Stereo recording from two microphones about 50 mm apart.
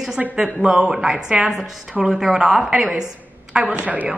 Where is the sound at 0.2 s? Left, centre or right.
Right.